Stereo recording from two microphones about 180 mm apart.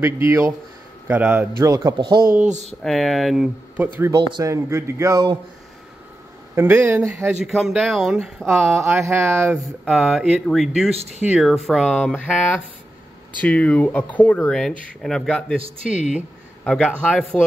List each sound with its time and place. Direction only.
0.0 s speech: 15° right (ahead or behind)
2.2 s speech: 45° right (ahead or behind)
2.8 s speech: centre (ahead or behind)
4.0 s speech: 20° right (ahead or behind)
6.5 s speech: 10° right (ahead or behind)
7.4 s speech: centre (ahead or behind)
9.8 s speech: centre (ahead or behind)